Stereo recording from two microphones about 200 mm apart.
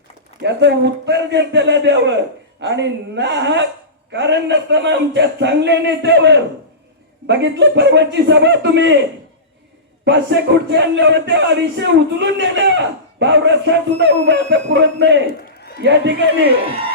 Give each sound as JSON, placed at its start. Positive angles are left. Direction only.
{"t": 0.4, "sound": "speech", "side_deg": -60}
{"t": 10.0, "sound": "speech", "side_deg": -65}